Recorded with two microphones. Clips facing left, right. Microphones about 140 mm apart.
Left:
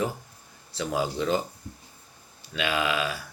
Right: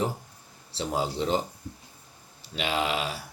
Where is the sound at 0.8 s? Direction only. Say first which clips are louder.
Left 1 dB; 25° right (ahead or behind).